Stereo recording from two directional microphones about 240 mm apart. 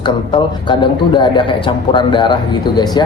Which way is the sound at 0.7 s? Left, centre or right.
Centre.